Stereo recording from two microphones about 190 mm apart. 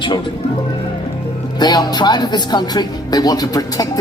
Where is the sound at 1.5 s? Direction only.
20° left (ahead or behind).